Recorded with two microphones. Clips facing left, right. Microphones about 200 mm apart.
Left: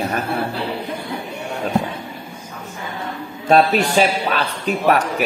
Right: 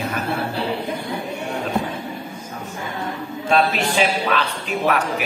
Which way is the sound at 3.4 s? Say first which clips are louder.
Left 4 dB; 40° left (ahead or behind).